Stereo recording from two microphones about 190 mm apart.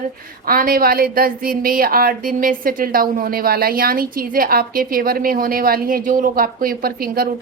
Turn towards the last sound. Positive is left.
turn(degrees=-50)  # may be behind; listen again after turning